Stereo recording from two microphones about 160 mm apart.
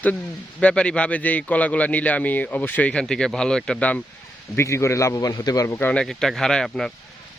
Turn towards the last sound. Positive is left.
turn(degrees=0)  # may be behind; listen again after turning